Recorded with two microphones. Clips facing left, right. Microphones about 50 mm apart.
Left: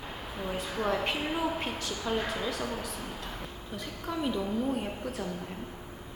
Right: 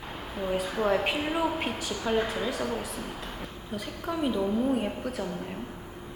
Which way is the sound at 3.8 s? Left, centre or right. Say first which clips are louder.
Right 3 dB; centre.